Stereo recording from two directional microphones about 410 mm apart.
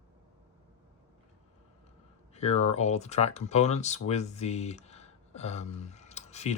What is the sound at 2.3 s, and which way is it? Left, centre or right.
Speech, centre.